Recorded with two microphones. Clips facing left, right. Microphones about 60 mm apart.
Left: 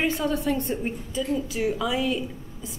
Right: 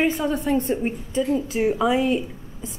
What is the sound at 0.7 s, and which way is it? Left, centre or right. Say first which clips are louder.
A woman's voice: right 4 dB; right.